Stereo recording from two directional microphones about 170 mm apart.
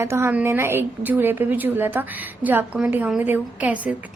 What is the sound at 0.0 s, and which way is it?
A woman's voice, 15° right (ahead or behind).